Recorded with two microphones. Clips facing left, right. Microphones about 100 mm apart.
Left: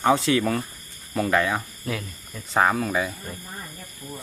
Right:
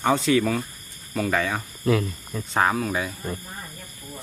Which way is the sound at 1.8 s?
45° right (ahead or behind).